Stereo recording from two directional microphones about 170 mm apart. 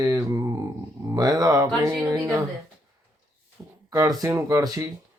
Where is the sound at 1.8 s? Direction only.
20° right (ahead or behind).